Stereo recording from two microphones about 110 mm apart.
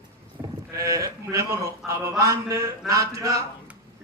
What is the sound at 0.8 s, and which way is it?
A man's voice, 30° right (ahead or behind).